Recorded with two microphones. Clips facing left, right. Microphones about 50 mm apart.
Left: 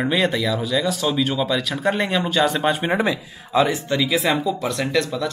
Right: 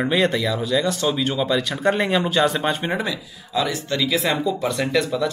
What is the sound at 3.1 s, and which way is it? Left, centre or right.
Speech, left.